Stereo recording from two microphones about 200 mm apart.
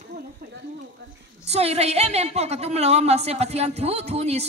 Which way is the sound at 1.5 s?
30° right (ahead or behind).